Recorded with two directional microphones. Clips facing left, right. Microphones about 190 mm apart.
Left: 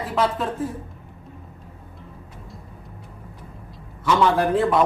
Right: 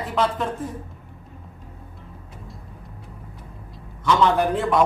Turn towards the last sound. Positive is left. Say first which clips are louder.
# left 1 dB
turn(degrees=0)  # may be behind; listen again after turning